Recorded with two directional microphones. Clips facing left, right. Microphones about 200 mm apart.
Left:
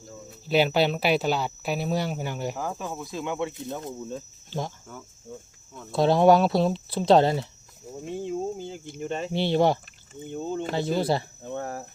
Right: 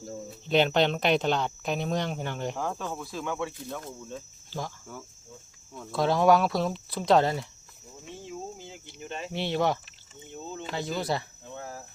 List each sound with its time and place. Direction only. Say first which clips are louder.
0.4 s speech: left 1 dB; 5° left (ahead or behind); by 3.9 s 25° left (ahead or behind)
5.9 s speech: left 4 dB; 30° left (ahead or behind)
7.9 s cricket: left 10 dB; 45° left (ahead or behind)
9.3 s speech: left 5 dB; 30° left (ahead or behind)
10.4 s speech: left 8 dB; 50° left (ahead or behind)
10.8 s speech: left 5 dB; 30° left (ahead or behind)
11.5 s cricket: left 8 dB; 65° left (ahead or behind)